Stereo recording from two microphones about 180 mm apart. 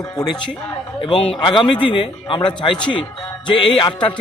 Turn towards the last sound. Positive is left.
turn(degrees=25)  # may be behind; listen again after turning